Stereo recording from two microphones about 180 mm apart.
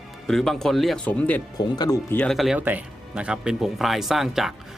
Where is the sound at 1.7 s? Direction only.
20° left (ahead or behind).